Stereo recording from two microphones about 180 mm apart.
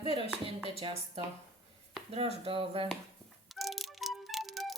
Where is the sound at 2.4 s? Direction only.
30° right (ahead or behind).